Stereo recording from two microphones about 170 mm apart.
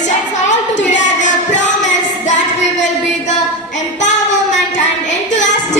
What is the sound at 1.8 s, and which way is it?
Music, 45° left (ahead or behind).